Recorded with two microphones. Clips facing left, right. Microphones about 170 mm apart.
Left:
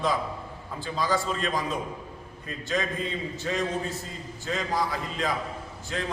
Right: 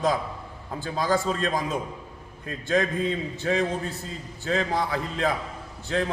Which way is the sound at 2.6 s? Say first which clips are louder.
Right 6 dB; 55° right (ahead or behind).